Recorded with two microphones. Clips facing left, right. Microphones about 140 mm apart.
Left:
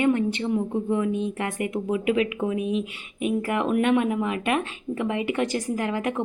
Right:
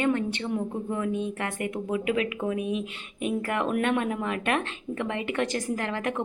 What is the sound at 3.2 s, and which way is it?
A woman's voice, 10° left (ahead or behind).